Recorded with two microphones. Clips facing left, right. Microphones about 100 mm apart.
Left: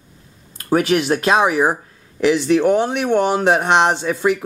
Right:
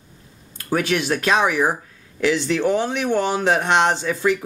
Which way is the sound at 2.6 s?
45° left (ahead or behind).